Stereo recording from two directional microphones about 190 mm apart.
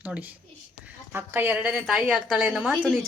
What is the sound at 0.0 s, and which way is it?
A woman's voice, 10° right (ahead or behind).